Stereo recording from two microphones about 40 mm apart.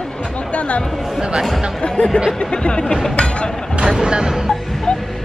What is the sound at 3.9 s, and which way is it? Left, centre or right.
Speech, centre.